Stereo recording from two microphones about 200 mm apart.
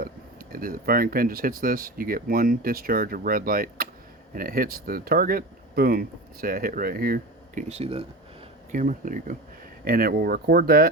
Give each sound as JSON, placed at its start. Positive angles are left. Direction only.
{"t": 0.0, "sound": "speech", "side_deg": -45}